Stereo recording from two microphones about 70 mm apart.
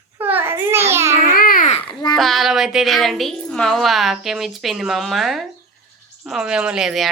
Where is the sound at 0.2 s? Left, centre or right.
Right.